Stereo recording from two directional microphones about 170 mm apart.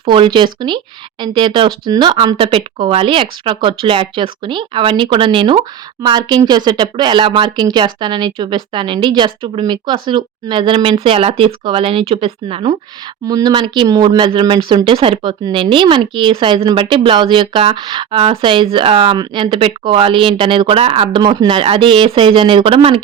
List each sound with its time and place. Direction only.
0.0 s speech: 30° right (ahead or behind)
13.2 s speech: 25° right (ahead or behind)